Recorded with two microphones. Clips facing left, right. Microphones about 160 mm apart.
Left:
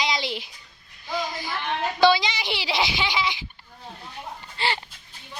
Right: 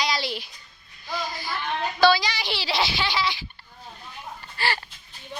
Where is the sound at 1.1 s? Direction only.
20° left (ahead or behind).